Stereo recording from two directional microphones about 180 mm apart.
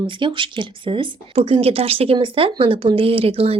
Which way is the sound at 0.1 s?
25° right (ahead or behind).